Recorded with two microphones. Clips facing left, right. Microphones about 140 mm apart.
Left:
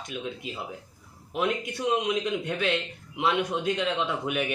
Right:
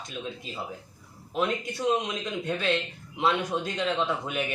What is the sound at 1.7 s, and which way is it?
A man's voice, 15° left (ahead or behind).